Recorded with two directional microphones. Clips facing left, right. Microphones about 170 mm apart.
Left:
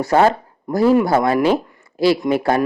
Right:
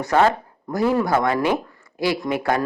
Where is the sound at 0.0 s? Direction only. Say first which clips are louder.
Left 3 dB; 30° left (ahead or behind).